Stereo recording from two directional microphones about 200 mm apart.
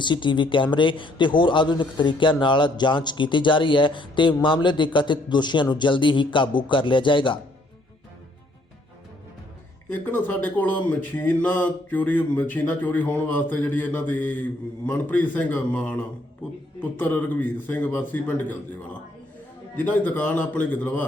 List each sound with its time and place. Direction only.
0.0 s a man's voice: 25° left (ahead or behind)
9.9 s speech: 10° left (ahead or behind)